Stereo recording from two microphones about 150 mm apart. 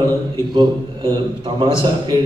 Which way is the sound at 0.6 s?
30° right (ahead or behind).